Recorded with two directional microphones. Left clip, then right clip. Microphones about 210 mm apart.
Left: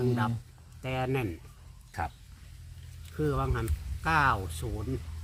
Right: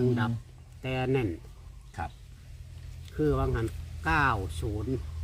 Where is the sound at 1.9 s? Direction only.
45° left (ahead or behind).